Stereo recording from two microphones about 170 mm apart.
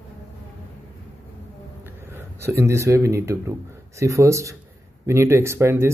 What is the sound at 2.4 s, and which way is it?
Speech, 15° right (ahead or behind).